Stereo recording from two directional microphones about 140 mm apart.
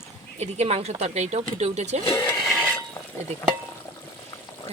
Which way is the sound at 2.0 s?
25° left (ahead or behind).